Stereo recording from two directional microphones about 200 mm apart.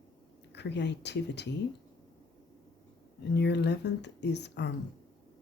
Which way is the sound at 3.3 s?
60° left (ahead or behind).